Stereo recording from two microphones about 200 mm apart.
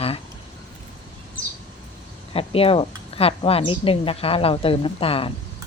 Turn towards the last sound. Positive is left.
turn(degrees=30)  # may be behind; listen again after turning